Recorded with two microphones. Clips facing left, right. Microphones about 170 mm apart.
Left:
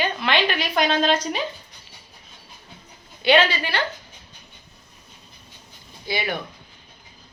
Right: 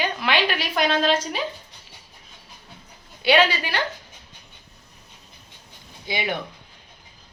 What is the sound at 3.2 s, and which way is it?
Speech, 10° right (ahead or behind).